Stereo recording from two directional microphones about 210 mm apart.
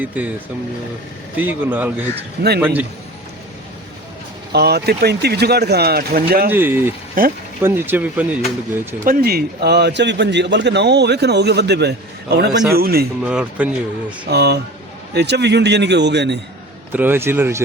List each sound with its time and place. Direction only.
1.4 s speech: 10° right (ahead or behind)
4.5 s a man's voice: 50° right (ahead or behind)
6.5 s speech: 10° right (ahead or behind)
7.2 s a man's voice: 45° right (ahead or behind)
7.6 s speech: 10° right (ahead or behind)
9.0 s a man's voice: 45° right (ahead or behind)
13.2 s speech: 5° right (ahead or behind)
14.3 s a man's voice: 50° right (ahead or behind)
16.9 s speech: 10° right (ahead or behind)